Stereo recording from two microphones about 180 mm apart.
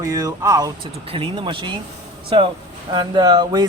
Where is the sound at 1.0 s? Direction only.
30° right (ahead or behind).